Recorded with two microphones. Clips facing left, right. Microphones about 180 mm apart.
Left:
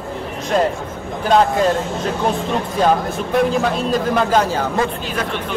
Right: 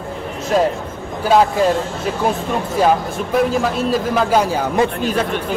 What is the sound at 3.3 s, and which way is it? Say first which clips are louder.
A man's voice: even; centre (ahead or behind).